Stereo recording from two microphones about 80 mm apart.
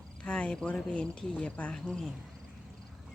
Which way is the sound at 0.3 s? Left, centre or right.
Centre.